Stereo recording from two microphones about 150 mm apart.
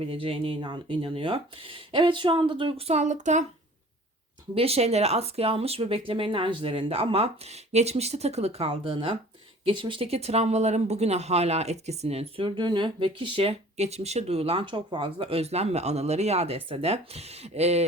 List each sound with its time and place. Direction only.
0.1 s speech: 40° right (ahead or behind)
4.5 s speech: 40° right (ahead or behind)